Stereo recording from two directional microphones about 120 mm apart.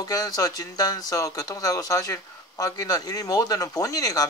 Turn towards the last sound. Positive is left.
turn(degrees=30)  # may be behind; listen again after turning